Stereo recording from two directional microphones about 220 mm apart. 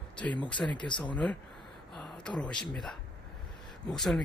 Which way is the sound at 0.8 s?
20° left (ahead or behind).